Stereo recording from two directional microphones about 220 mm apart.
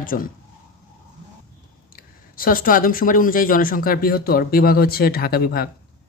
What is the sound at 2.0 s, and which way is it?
Speech, 40° left (ahead or behind).